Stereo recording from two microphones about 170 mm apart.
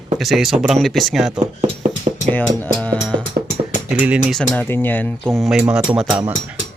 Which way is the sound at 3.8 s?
10° right (ahead or behind).